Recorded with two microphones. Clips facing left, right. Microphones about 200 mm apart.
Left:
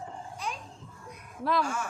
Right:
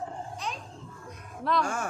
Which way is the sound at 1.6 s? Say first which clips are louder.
Right 2 dB; 50° right (ahead or behind).